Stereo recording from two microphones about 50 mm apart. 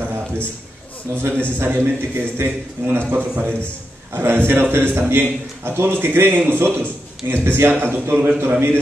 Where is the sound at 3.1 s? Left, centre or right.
Right.